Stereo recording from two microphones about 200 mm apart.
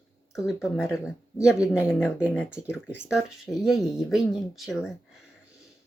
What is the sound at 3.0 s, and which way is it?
Speech, centre (ahead or behind).